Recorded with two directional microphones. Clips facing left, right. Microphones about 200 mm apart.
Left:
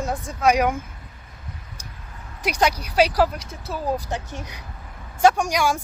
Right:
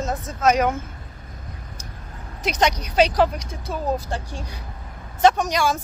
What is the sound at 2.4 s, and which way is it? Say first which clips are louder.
Speech: even; 10° left (ahead or behind).